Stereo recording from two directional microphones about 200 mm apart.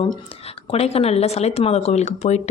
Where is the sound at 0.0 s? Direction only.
30° left (ahead or behind).